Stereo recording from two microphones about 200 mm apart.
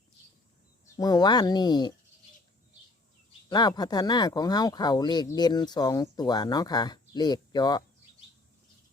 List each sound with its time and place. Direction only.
0.9 s speech: 20° left (ahead or behind)
3.5 s speech: 20° left (ahead or behind)